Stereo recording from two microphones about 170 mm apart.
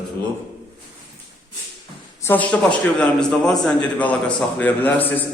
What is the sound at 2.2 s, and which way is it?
A man's voice, 10° left (ahead or behind).